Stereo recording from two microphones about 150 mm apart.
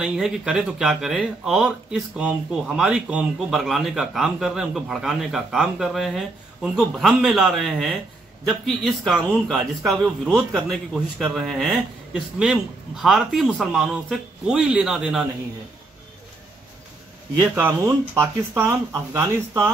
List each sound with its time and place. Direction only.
0.0 s speech: 5° right (ahead or behind)
17.6 s speech: 15° right (ahead or behind)